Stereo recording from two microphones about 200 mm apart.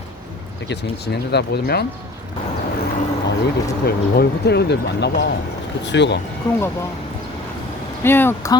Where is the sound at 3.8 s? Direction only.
55° left (ahead or behind).